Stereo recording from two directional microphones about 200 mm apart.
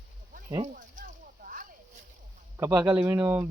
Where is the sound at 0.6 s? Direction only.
45° right (ahead or behind).